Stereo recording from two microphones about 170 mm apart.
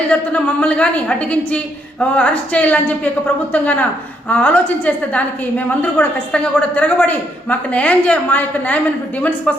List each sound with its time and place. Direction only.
0.1 s a woman's voice: 5° left (ahead or behind)